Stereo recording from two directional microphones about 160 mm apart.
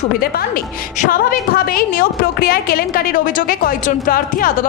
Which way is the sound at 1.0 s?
65° left (ahead or behind).